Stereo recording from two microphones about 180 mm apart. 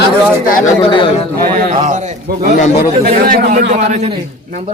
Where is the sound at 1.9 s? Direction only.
40° right (ahead or behind).